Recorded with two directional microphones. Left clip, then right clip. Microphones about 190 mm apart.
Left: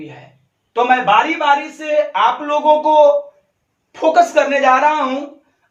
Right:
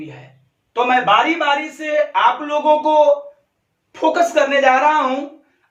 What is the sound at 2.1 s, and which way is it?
A woman's voice, 10° left (ahead or behind).